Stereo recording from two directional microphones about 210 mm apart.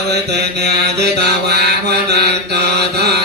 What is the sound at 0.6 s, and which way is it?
Mantra, 50° right (ahead or behind).